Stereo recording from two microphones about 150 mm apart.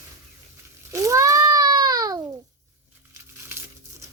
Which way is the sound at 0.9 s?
20° right (ahead or behind).